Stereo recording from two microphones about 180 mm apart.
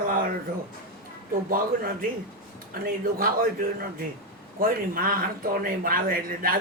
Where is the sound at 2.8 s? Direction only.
50° right (ahead or behind).